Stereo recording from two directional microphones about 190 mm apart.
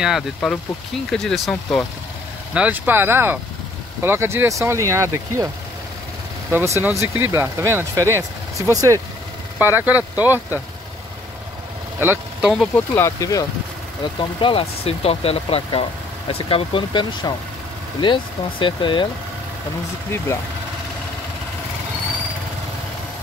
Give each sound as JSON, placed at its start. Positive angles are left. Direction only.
{"t": 0.0, "sound": "speech", "side_deg": 0}
{"t": 6.5, "sound": "speech", "side_deg": -15}
{"t": 12.0, "sound": "speech", "side_deg": -10}
{"t": 12.7, "sound": "speech", "side_deg": 15}
{"t": 14.4, "sound": "speech", "side_deg": 30}